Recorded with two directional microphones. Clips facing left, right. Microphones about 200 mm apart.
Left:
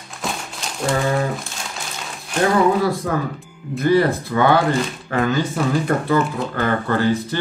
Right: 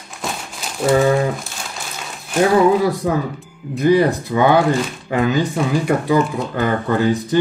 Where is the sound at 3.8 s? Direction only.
15° right (ahead or behind).